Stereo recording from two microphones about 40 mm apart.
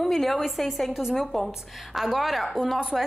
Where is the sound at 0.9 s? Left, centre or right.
Centre.